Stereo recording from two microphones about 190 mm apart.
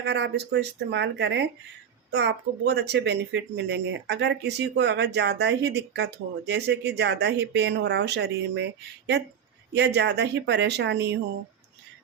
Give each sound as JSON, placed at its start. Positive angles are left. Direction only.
{"t": 0.0, "sound": "speech", "side_deg": -65}
{"t": 9.7, "sound": "speech", "side_deg": -65}